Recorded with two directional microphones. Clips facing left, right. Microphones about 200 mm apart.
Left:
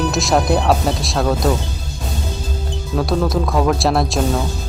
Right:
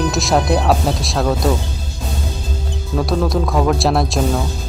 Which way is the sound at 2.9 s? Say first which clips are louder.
Even; centre (ahead or behind).